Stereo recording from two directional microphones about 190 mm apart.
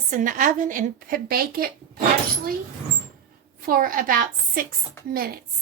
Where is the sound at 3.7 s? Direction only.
50° right (ahead or behind).